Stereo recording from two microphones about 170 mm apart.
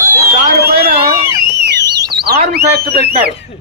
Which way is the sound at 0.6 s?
70° right (ahead or behind).